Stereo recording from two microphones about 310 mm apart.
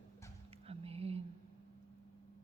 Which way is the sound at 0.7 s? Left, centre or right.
Centre.